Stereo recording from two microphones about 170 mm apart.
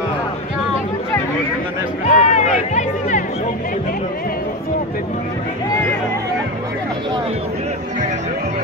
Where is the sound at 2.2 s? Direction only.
45° left (ahead or behind).